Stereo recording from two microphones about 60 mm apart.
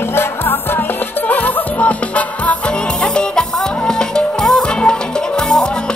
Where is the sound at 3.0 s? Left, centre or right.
Centre.